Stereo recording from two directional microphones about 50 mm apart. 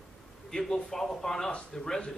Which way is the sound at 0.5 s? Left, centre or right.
Centre.